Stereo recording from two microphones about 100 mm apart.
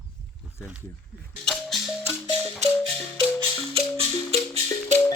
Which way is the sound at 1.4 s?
5° left (ahead or behind).